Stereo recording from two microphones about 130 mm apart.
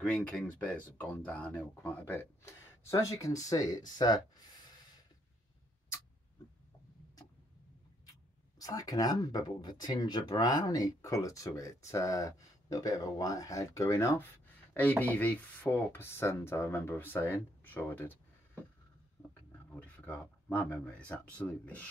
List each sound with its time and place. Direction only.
0.0 s speech: 10° left (ahead or behind); by 4.2 s 30° left (ahead or behind)
8.1 s speech: 30° left (ahead or behind)
19.7 s speech: 10° left (ahead or behind)